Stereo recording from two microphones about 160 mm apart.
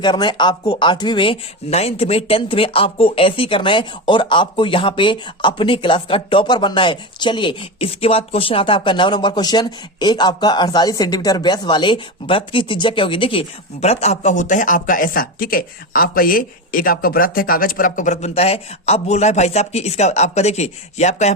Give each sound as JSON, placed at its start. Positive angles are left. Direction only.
{"t": 0.0, "sound": "a man's voice", "side_deg": 30}